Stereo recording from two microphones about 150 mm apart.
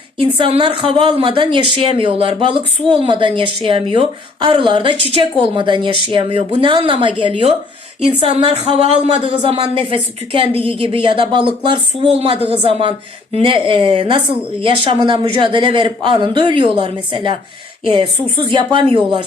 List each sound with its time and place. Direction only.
0.2 s speech: 40° right (ahead or behind)